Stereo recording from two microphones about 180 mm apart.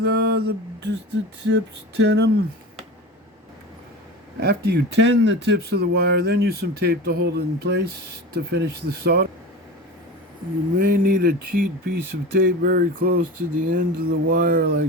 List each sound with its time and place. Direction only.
0.0 s a sound: 60° right (ahead or behind)
4.4 s speech: 65° right (ahead or behind)
10.8 s speech: 55° right (ahead or behind)